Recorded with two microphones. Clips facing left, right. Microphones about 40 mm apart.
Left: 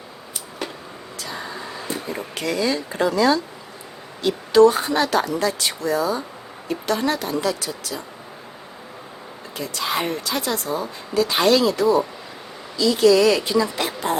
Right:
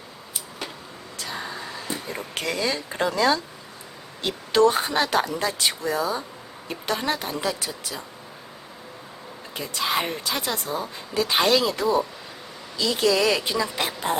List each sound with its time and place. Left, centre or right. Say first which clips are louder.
0.6 s vehicle: left 5 dB; centre
2.3 s speech: left 4 dB; right; by 8.0 s centre
9.6 s speech: left 1 dB; right